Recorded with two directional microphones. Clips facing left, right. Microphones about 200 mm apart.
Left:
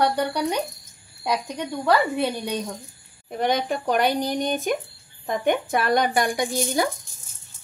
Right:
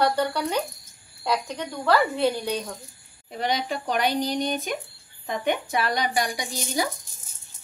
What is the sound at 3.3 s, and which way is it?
A woman's voice, 50° left (ahead or behind).